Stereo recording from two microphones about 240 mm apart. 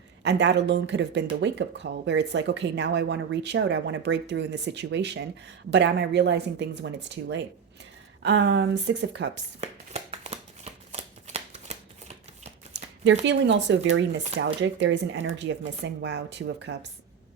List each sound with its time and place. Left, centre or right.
0.2 s speech: right
9.6 s shuffling cards: right
13.2 s speech: right